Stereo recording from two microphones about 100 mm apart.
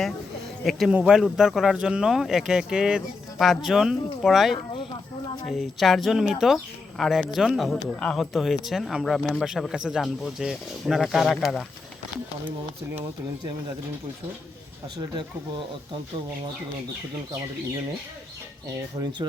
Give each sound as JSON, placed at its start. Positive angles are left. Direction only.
{"t": 0.6, "sound": "speech", "side_deg": 0}
{"t": 4.5, "sound": "speech", "side_deg": 55}
{"t": 5.5, "sound": "speech", "side_deg": 0}